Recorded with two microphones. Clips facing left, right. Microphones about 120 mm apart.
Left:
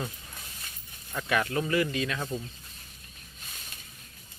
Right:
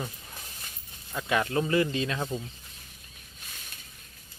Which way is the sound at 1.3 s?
25° right (ahead or behind).